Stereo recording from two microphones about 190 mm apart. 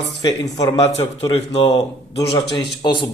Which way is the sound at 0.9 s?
30° left (ahead or behind).